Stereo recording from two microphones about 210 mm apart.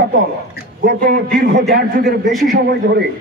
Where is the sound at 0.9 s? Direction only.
45° right (ahead or behind).